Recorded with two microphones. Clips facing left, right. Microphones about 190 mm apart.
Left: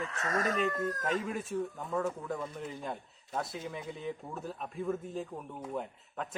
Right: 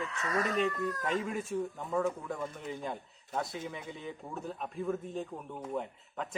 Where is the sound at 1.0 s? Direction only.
Centre (ahead or behind).